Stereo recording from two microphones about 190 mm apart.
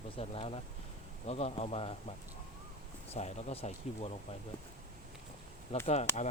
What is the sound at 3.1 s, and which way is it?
Speech, 35° left (ahead or behind).